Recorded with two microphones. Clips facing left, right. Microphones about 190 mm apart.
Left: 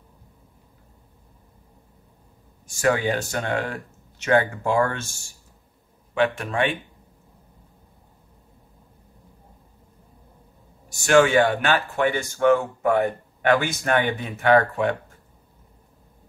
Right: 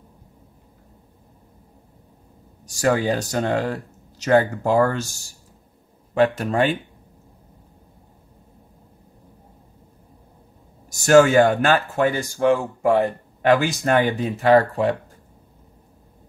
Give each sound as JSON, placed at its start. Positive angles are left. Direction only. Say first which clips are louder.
{"t": 2.6, "sound": "speech", "louder": "right 2 dB", "side_deg": -40}
{"t": 10.9, "sound": "speech", "louder": "right 4 dB", "side_deg": -40}